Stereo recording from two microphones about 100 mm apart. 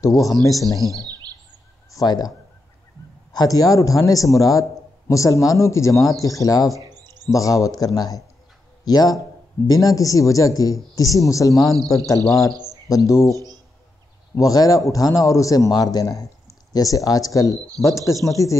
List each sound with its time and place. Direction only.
0.0 s a man's voice: 35° left (ahead or behind)
1.9 s speech: 40° left (ahead or behind)
3.3 s a man's voice: 40° left (ahead or behind)